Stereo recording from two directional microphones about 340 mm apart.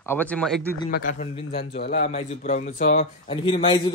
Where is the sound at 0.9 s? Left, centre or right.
Left.